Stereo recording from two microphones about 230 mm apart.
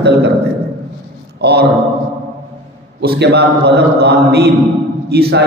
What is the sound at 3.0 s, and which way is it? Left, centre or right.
A man's voice, right.